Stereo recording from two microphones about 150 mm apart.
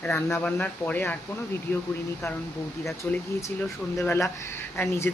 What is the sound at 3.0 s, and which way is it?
Speech, 10° left (ahead or behind).